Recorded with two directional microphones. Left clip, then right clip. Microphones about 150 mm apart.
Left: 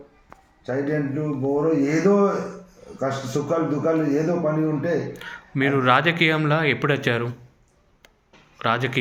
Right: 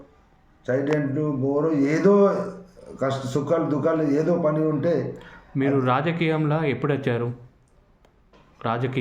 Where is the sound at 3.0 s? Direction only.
25° right (ahead or behind).